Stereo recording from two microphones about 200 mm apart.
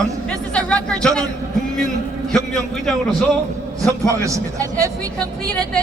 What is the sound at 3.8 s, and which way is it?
A man's voice, 15° right (ahead or behind).